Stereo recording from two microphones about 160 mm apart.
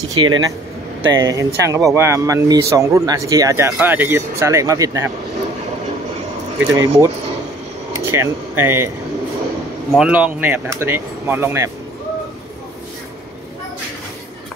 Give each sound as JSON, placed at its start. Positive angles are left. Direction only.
{"t": 0.1, "sound": "speech", "side_deg": -25}
{"t": 6.7, "sound": "speech", "side_deg": -20}
{"t": 9.8, "sound": "speech", "side_deg": -5}